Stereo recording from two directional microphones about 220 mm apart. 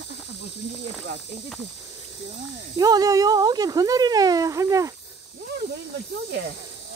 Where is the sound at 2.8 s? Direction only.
15° right (ahead or behind).